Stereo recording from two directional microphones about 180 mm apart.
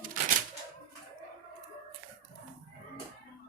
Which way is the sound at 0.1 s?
50° right (ahead or behind).